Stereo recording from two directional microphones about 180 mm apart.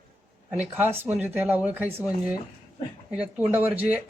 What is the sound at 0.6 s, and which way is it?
Speech, 10° right (ahead or behind).